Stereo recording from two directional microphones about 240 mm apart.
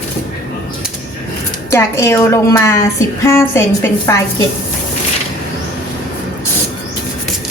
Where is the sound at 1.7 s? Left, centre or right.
Centre.